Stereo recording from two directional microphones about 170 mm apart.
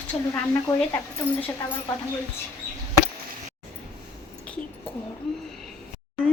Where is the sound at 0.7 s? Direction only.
20° left (ahead or behind).